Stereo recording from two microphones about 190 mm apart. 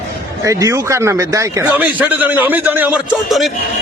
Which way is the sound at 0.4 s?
15° right (ahead or behind).